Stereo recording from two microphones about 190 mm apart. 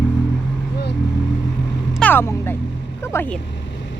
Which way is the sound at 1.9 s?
10° left (ahead or behind).